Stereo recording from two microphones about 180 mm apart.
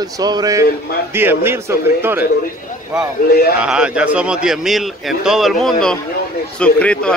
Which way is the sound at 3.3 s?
60° left (ahead or behind).